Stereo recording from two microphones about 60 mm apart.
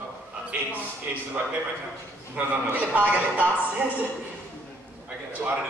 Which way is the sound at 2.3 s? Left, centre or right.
Right.